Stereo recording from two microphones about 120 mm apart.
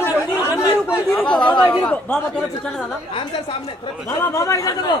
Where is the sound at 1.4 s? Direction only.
40° left (ahead or behind).